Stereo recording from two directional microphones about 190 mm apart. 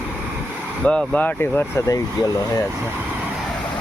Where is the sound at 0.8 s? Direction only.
5° left (ahead or behind).